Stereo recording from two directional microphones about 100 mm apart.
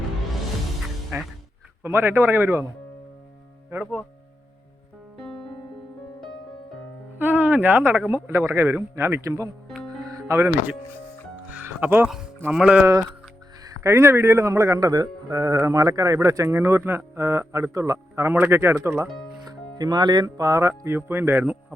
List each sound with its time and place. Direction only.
1.1 s music: 30° right (ahead or behind)
1.8 s a man's voice: 25° right (ahead or behind)
3.7 s speech: 15° right (ahead or behind)
7.2 s a man's voice: 20° right (ahead or behind)
9.6 s music: centre (ahead or behind)
10.1 s music: 35° right (ahead or behind)
11.4 s music: 20° right (ahead or behind)
12.0 s speech: 5° right (ahead or behind)
13.7 s a man's voice: 30° right (ahead or behind)
19.5 s speech: 40° right (ahead or behind); by 21.6 s 15° right (ahead or behind)